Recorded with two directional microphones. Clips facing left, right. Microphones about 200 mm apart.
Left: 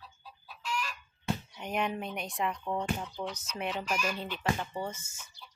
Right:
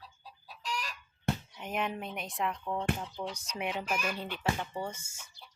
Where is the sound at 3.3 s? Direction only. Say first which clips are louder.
Even; 15° right (ahead or behind).